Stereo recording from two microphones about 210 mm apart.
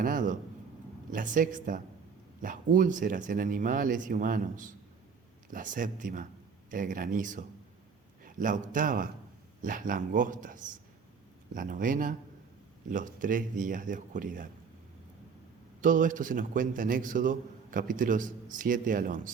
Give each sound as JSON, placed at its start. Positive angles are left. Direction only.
{"t": 0.0, "sound": "a sound", "side_deg": -40}
{"t": 1.1, "sound": "a man's voice", "side_deg": -40}
{"t": 15.8, "sound": "a man's voice", "side_deg": -40}